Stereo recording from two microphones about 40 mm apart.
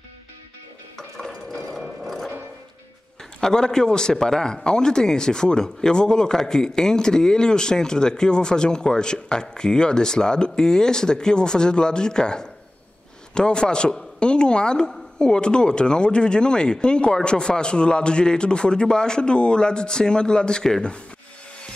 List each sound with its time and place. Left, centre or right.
0.9 s hammer: centre
1.8 s a sound: centre
3.3 s a man's voice: centre